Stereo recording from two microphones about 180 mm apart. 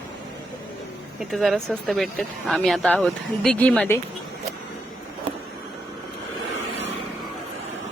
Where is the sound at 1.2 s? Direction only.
Centre (ahead or behind).